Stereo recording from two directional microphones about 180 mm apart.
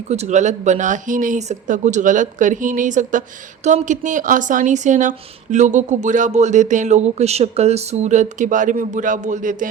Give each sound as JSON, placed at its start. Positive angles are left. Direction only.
{"t": 0.1, "sound": "speech", "side_deg": -40}